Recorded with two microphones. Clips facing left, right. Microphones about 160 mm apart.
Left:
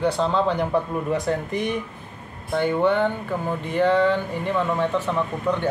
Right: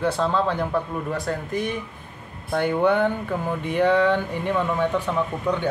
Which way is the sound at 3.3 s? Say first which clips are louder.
Even; 5° right (ahead or behind).